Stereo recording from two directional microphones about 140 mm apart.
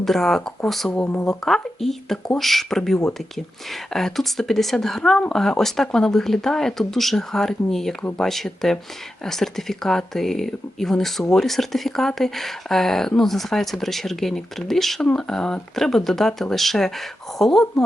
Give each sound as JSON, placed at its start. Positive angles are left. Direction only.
{"t": 0.0, "sound": "speech", "side_deg": 0}
{"t": 1.3, "sound": "speech", "side_deg": 0}